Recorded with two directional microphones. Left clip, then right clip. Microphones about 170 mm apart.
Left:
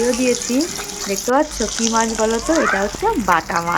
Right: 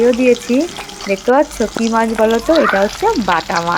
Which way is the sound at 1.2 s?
20° right (ahead or behind).